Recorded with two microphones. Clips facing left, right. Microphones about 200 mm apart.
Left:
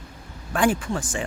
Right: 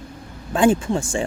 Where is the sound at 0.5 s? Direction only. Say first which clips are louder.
Right 5 dB; 25° right (ahead or behind).